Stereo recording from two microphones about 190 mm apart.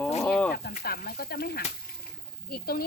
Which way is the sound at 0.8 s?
50° left (ahead or behind).